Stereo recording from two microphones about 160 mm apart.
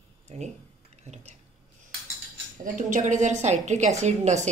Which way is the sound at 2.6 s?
55° right (ahead or behind).